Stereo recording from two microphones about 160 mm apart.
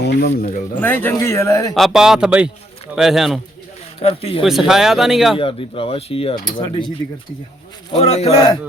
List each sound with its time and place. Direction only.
0.0 s a sound: 90° left
0.8 s speech: 10° left (ahead or behind)
1.7 s speech: centre (ahead or behind)
4.0 s speech: 35° left (ahead or behind)
4.4 s speech: centre (ahead or behind)
5.4 s speech: 35° left (ahead or behind)
7.9 s speech: 40° left (ahead or behind)